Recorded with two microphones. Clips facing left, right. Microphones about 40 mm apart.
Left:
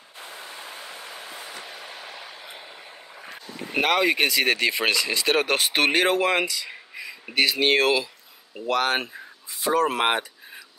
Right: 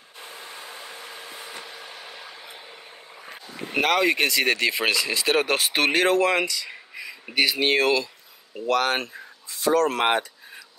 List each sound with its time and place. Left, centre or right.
0.3 s a sound: left
1.6 s vehicle: left
3.7 s speech: centre